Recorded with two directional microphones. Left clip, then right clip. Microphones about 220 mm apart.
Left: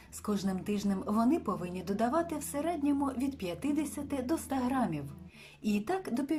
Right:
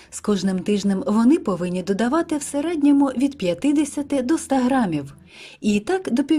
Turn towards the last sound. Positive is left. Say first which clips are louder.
# right 12 dB
turn(degrees=-45)  # may be behind; listen again after turning